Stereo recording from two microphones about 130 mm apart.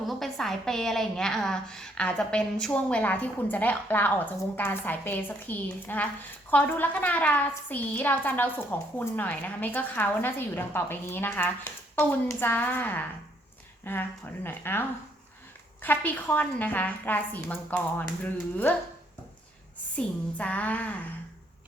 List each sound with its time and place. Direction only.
0.1 s a woman's voice: centre (ahead or behind)
20.0 s a woman's voice: 10° left (ahead or behind)